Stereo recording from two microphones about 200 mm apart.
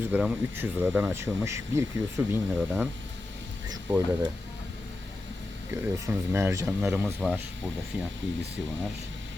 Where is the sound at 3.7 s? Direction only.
20° right (ahead or behind).